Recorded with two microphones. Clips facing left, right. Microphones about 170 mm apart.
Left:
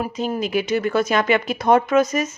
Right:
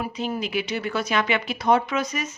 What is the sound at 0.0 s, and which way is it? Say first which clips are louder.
Speech: left 4 dB; 45° left (ahead or behind).